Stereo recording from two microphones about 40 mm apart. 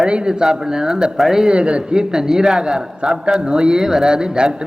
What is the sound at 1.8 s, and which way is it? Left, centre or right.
Speech, centre.